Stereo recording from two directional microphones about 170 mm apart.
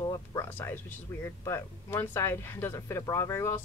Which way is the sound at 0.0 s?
20° left (ahead or behind).